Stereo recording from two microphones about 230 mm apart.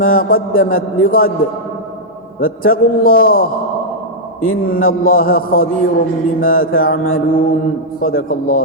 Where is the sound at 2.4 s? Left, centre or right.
Left.